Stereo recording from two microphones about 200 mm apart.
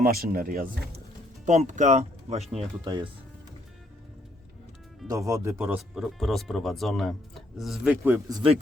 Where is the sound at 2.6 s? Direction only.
25° right (ahead or behind).